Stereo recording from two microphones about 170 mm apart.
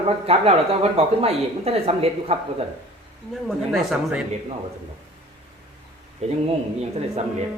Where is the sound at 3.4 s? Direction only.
Centre (ahead or behind).